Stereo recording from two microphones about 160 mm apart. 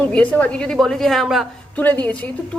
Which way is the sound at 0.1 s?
10° left (ahead or behind).